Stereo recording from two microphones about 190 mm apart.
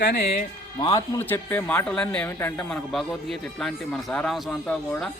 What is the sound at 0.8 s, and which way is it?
A man's voice, 20° left (ahead or behind).